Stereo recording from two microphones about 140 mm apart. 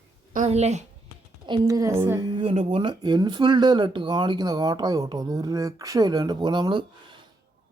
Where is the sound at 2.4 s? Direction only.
40° right (ahead or behind).